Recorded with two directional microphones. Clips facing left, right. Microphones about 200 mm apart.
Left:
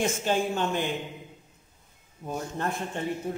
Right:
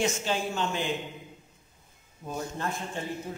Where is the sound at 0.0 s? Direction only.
50° left (ahead or behind).